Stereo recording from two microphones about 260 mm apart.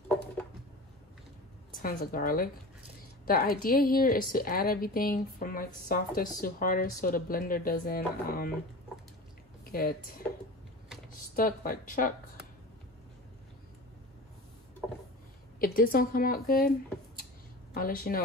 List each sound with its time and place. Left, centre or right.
1.7 s a woman's voice: left
9.7 s speech: left
11.3 s speech: left
15.6 s speech: left
17.7 s speech: left